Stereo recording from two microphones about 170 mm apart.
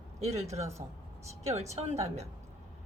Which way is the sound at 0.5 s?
15° right (ahead or behind).